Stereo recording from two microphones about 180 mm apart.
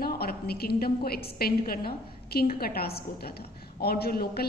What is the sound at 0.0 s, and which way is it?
A woman's voice, 60° left (ahead or behind).